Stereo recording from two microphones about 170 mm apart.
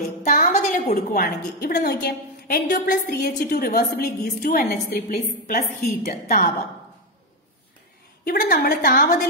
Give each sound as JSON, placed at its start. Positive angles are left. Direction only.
{"t": 0.2, "sound": "a woman's voice", "side_deg": 50}
{"t": 8.3, "sound": "a woman's voice", "side_deg": 60}